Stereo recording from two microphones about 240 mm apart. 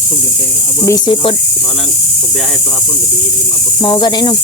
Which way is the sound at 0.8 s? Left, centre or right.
Centre.